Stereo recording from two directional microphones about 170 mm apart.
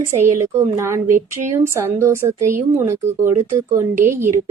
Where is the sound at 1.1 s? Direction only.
50° right (ahead or behind).